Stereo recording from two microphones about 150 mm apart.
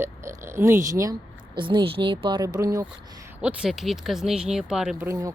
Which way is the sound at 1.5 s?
35° right (ahead or behind).